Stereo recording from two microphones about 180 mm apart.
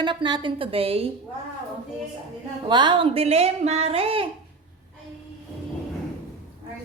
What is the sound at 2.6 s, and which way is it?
Speech, 25° right (ahead or behind).